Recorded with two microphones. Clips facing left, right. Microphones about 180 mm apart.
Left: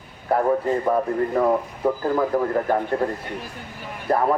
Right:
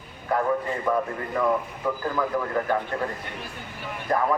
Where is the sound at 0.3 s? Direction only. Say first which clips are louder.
Left 5 dB; 30° left (ahead or behind).